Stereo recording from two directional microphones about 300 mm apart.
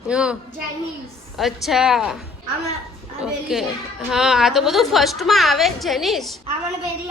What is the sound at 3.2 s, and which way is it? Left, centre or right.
A woman's voice, centre.